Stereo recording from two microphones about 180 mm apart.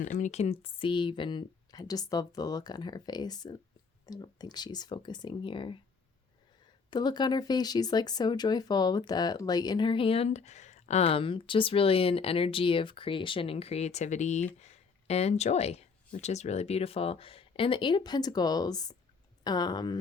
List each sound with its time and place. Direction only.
0.0 s speech: 45° left (ahead or behind); by 5.7 s 30° left (ahead or behind)
6.9 s speech: 25° left (ahead or behind)